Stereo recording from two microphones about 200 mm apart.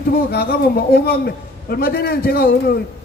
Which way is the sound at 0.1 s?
50° left (ahead or behind).